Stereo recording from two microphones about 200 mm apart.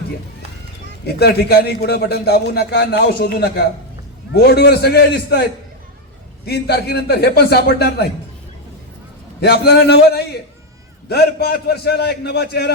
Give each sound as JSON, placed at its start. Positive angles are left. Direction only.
{"t": 1.0, "sound": "a man's voice", "side_deg": 55}
{"t": 9.4, "sound": "a man's voice", "side_deg": 55}